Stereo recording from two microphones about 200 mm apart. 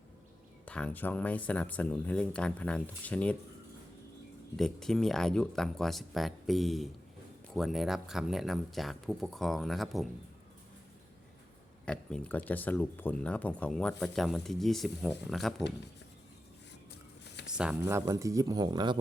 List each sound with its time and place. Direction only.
0.6 s speech: 5° left (ahead or behind)
4.5 s speech: centre (ahead or behind)
11.9 s speech: 5° left (ahead or behind)
17.5 s speech: 5° right (ahead or behind); by 18.9 s 20° right (ahead or behind)